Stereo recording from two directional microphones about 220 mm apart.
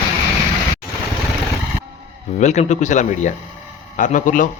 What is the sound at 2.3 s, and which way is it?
A man's voice, 30° left (ahead or behind).